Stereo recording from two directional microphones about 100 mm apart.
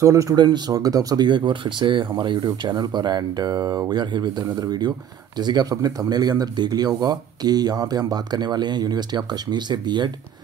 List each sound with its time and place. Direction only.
0.0 s speech: 30° right (ahead or behind); by 10.1 s 50° right (ahead or behind)